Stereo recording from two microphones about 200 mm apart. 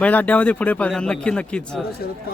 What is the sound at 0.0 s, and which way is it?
Speech, 5° left (ahead or behind).